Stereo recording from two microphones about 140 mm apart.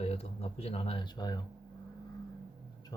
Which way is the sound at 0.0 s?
45° left (ahead or behind).